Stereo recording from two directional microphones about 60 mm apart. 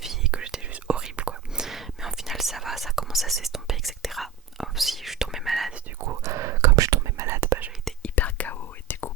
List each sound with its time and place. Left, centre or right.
0.3 s whispering: centre
1.6 s whispering: centre
6.0 s whispering: right
7.3 s whispering: right
8.0 s whispering: left